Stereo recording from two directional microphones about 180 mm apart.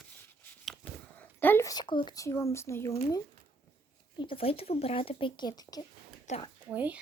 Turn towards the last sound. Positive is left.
turn(degrees=-5)  # may be behind; listen again after turning